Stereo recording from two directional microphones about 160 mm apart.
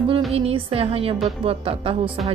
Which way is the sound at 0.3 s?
35° right (ahead or behind).